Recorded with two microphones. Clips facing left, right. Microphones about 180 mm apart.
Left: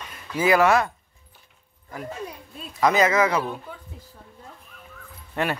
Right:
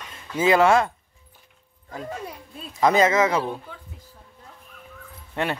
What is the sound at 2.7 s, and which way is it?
Speech, 25° right (ahead or behind).